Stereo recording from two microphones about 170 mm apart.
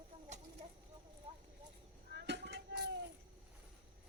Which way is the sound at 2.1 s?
80° right.